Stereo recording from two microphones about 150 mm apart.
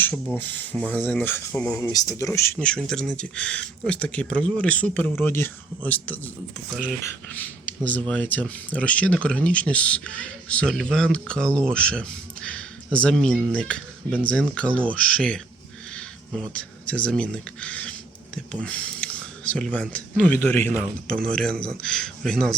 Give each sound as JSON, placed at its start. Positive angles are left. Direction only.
{"t": 0.0, "sound": "speech", "side_deg": 10}
{"t": 1.8, "sound": "speech", "side_deg": 25}
{"t": 2.6, "sound": "a man's voice", "side_deg": 5}